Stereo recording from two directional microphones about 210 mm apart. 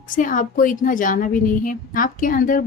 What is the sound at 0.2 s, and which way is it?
A woman's voice, 40° left (ahead or behind).